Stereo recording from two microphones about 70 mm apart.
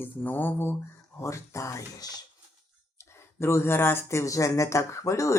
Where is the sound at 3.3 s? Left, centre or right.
Left.